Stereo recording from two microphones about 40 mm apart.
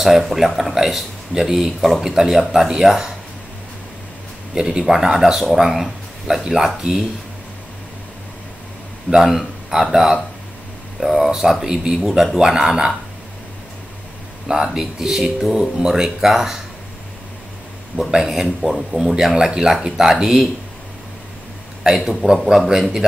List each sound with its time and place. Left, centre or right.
0.0 s speech: centre
4.6 s speech: centre
9.1 s speech: centre
14.5 s speech: centre
18.1 s speech: centre
21.8 s speech: centre